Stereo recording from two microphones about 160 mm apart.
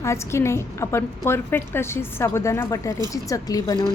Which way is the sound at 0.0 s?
15° left (ahead or behind).